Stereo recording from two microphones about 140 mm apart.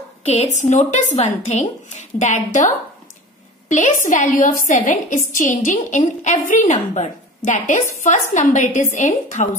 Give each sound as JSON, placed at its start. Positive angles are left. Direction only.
{"t": 0.2, "sound": "a woman's voice", "side_deg": 50}